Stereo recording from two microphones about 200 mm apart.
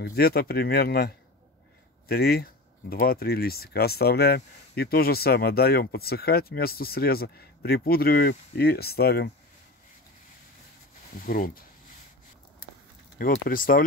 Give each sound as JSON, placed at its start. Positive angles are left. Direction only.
{"t": 0.1, "sound": "speech", "side_deg": 50}
{"t": 11.1, "sound": "speech", "side_deg": 45}
{"t": 13.2, "sound": "speech", "side_deg": 45}